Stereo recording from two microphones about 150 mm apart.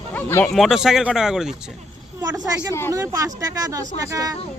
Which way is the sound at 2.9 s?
20° right (ahead or behind).